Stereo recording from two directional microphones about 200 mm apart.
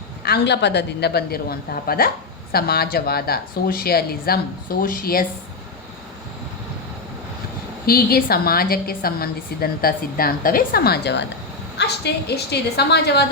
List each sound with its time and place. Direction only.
0.2 s a woman's voice: 55° left (ahead or behind)
7.9 s a woman's voice: 50° left (ahead or behind)